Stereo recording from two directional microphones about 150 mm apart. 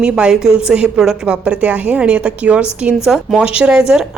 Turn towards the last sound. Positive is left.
turn(degrees=-5)  # may be behind; listen again after turning